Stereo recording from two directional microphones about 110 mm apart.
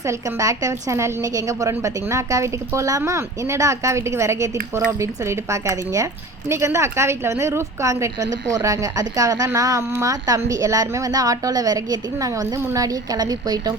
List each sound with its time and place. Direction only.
0.0 s a woman's voice: 30° right (ahead or behind)